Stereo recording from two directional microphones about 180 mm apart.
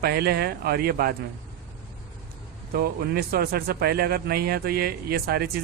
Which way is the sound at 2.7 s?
55° right (ahead or behind).